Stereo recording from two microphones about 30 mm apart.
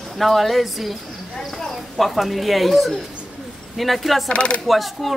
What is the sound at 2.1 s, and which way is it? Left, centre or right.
Speech, centre.